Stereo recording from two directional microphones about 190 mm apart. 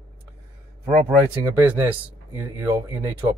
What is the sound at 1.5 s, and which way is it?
Speech, 10° right (ahead or behind).